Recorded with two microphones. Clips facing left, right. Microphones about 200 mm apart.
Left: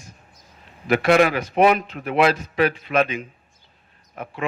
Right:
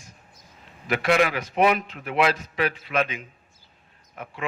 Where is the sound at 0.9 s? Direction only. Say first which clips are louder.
Left 5 dB; 45° left (ahead or behind).